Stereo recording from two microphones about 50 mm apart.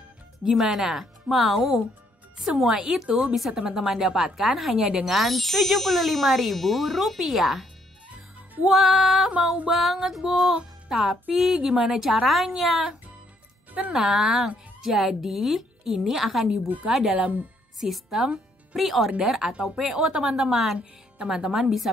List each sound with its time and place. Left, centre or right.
0.5 s a woman's voice: centre
8.6 s speech: centre
10.5 s music: centre
11.3 s speech: centre
13.9 s a woman's voice: centre
17.1 s speech: right
17.7 s speech: centre
19.5 s a woman's voice: centre
20.7 s speech: centre